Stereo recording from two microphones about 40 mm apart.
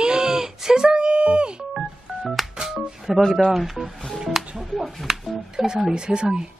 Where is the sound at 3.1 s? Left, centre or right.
Centre.